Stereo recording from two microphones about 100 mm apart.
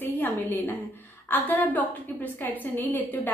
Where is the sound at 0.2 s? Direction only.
20° left (ahead or behind).